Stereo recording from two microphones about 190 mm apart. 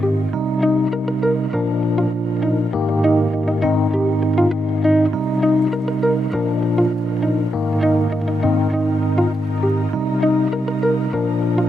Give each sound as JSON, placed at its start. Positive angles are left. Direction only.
{"t": 4.4, "sound": "music", "side_deg": 0}